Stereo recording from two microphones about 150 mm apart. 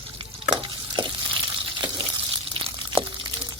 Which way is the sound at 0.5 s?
35° right (ahead or behind).